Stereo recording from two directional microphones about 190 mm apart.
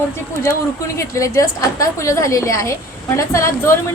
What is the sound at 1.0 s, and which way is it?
A woman's voice, 15° left (ahead or behind).